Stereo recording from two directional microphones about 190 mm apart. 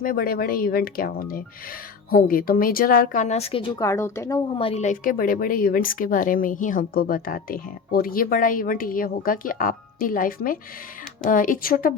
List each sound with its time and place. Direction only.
0.0 s a woman's voice: 50° left (ahead or behind); by 3.7 s 30° left (ahead or behind)
3.8 s a woman's voice: 15° left (ahead or behind); by 11.9 s 50° left (ahead or behind)